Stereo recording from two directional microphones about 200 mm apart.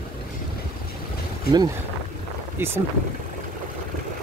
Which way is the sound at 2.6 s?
10° right (ahead or behind).